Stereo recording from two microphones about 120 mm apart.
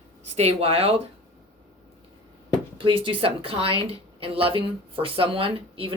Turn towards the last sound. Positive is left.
turn(degrees=-50)  # may be behind; listen again after turning